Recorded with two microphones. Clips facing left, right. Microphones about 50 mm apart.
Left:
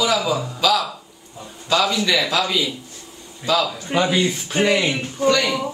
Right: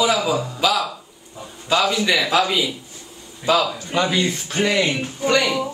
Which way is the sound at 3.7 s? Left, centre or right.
Centre.